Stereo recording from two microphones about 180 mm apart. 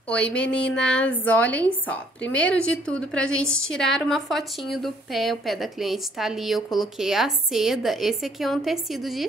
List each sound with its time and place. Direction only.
0.1 s a woman's voice: 5° left (ahead or behind)